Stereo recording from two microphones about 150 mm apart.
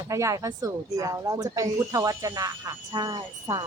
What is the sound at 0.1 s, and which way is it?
A woman's voice, 20° right (ahead or behind).